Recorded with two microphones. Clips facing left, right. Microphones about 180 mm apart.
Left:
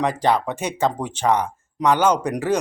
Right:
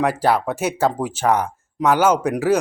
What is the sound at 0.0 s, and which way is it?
Speech, 5° right (ahead or behind).